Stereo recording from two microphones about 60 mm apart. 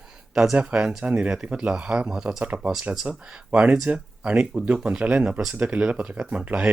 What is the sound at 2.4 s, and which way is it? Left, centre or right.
Speech, right.